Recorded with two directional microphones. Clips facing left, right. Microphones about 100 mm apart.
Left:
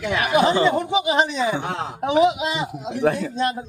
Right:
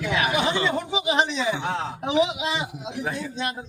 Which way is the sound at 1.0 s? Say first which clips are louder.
Left 4 dB; 50° left (ahead or behind).